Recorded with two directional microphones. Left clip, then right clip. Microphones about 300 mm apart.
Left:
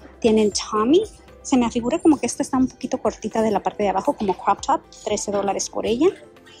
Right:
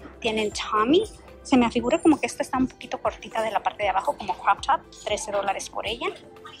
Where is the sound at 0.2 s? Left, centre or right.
Centre.